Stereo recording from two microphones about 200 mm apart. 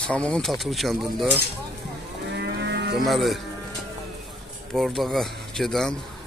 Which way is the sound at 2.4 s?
60° right (ahead or behind).